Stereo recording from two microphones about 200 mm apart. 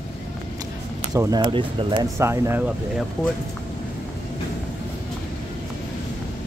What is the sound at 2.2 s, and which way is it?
Speech, 15° right (ahead or behind).